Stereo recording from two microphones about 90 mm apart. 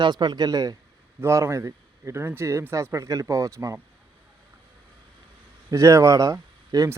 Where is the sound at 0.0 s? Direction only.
55° right (ahead or behind).